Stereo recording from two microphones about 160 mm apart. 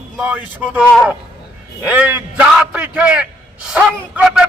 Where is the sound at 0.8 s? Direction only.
Centre (ahead or behind).